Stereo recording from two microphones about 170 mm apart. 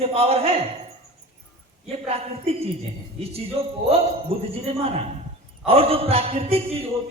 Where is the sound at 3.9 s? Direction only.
35° right (ahead or behind).